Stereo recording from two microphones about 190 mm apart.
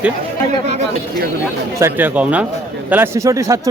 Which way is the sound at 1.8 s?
10° right (ahead or behind).